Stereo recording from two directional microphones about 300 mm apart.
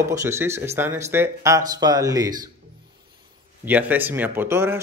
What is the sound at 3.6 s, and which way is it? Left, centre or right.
Speech, centre.